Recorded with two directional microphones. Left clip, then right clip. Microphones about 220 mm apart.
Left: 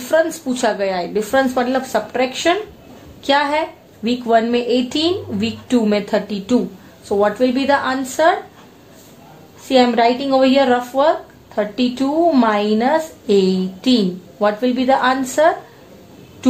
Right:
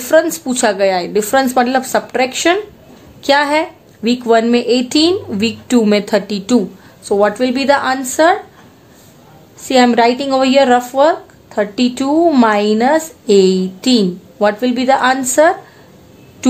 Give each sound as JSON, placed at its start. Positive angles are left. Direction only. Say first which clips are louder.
{"t": 0.0, "sound": "speech", "louder": "right 4 dB", "side_deg": -50}
{"t": 9.7, "sound": "speech", "louder": "right 3 dB", "side_deg": -50}